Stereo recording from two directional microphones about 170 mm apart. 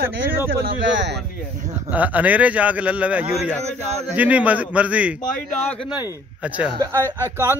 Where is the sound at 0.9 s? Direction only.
90° right.